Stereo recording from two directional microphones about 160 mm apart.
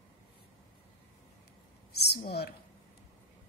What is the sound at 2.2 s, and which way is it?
Speech, 80° left.